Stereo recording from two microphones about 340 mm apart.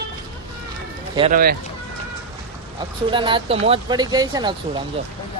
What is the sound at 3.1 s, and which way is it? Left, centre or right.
Speech, centre.